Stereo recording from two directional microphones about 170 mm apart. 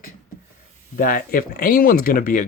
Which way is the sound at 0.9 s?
55° left (ahead or behind).